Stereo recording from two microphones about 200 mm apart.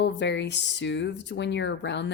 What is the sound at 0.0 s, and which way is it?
A woman's voice, 60° left (ahead or behind).